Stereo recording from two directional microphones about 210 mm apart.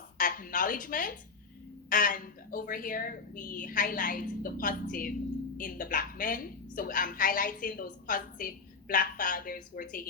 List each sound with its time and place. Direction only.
0.2 s a woman's voice: 40° left (ahead or behind)